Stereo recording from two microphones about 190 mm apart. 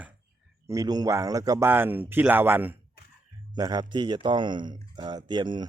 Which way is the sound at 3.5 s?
20° right (ahead or behind).